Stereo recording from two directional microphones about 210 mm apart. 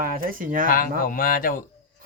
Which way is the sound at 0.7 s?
40° left (ahead or behind).